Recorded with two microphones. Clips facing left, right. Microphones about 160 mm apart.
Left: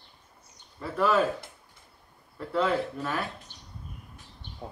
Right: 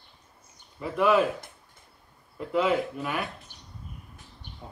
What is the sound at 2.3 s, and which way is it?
Speech, 10° right (ahead or behind).